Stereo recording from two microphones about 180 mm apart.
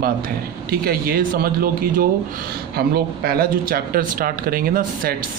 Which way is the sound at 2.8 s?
55° right (ahead or behind).